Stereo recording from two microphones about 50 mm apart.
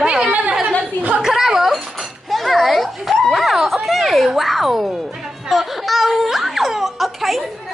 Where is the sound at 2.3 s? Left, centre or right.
Centre.